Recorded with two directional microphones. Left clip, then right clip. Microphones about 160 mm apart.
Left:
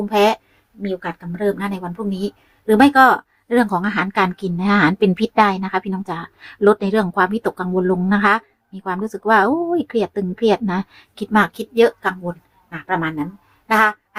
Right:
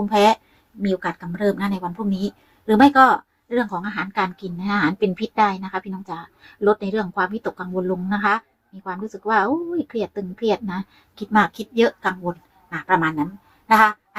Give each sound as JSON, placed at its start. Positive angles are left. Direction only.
{"t": 0.0, "sound": "speech", "side_deg": 5}
{"t": 3.5, "sound": "speech", "side_deg": 35}
{"t": 13.7, "sound": "a sound", "side_deg": 5}